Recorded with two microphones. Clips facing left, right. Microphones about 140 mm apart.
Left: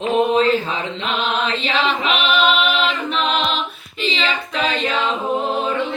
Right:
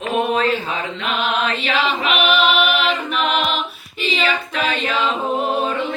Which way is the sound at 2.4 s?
Centre (ahead or behind).